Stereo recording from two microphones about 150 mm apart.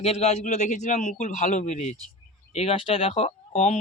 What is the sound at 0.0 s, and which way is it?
A man's voice, 45° left (ahead or behind).